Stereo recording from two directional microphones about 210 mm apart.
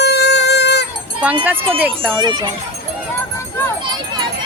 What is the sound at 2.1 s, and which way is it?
Speech, 20° right (ahead or behind).